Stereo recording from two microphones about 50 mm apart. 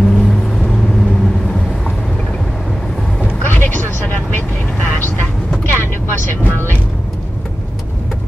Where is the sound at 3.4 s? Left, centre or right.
Left.